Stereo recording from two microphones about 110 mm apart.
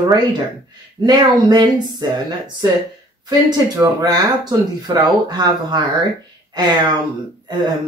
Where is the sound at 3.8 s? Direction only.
35° right (ahead or behind).